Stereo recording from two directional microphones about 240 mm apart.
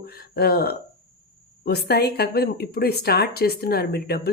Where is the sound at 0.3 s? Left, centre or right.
Left.